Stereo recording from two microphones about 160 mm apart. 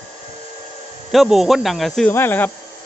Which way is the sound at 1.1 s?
Centre (ahead or behind).